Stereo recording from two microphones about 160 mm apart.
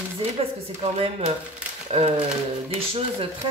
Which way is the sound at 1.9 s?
40° right (ahead or behind).